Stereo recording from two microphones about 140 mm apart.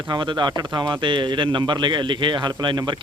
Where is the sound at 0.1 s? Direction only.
35° right (ahead or behind).